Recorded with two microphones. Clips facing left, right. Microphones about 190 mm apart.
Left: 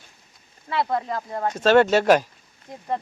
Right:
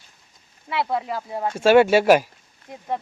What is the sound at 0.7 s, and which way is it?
Speech, 5° right (ahead or behind).